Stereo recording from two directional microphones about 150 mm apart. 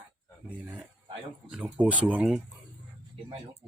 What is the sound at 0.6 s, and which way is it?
Speech, 10° right (ahead or behind).